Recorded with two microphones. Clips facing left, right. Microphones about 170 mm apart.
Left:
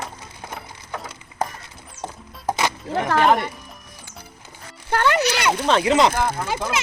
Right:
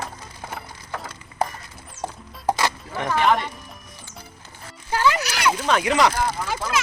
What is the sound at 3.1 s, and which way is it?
Music, 45° left (ahead or behind).